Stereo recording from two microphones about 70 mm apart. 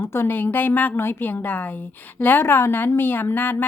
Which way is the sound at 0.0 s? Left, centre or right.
Left.